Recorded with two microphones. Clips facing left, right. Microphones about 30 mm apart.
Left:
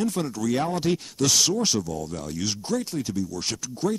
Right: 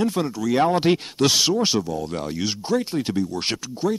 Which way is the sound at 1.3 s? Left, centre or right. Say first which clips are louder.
Right 3 dB; right.